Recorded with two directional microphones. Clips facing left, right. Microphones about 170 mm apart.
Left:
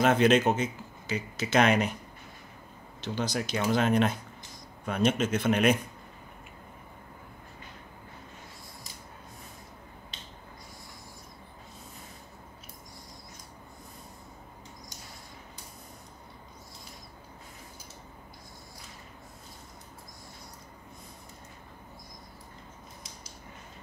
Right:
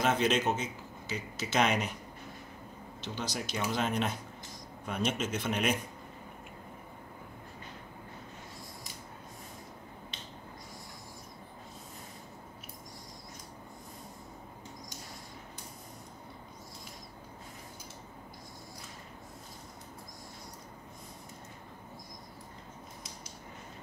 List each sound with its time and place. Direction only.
0.0 s speech: 60° left (ahead or behind)
3.2 s speech: 65° left (ahead or behind)